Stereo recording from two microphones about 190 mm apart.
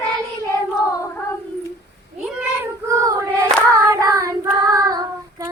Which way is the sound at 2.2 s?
5° right (ahead or behind).